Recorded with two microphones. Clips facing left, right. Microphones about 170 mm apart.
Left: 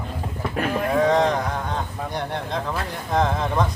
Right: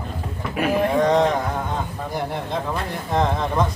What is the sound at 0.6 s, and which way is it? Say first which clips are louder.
Speech: right 2 dB; 5° right (ahead or behind).